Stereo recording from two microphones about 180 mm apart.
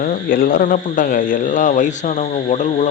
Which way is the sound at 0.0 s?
50° left (ahead or behind).